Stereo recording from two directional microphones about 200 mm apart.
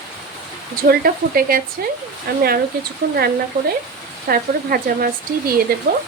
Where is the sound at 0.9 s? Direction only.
45° right (ahead or behind).